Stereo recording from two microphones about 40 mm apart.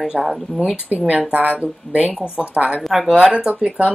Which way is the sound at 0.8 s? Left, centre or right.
Right.